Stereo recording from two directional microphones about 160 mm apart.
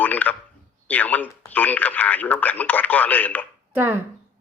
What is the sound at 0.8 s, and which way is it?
Speech, 10° left (ahead or behind).